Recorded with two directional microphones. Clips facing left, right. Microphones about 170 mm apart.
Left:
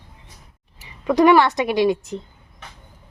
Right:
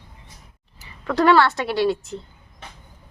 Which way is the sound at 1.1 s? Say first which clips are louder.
Left 3 dB; 15° left (ahead or behind).